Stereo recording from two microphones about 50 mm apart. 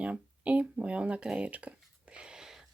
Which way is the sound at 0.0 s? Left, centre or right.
Right.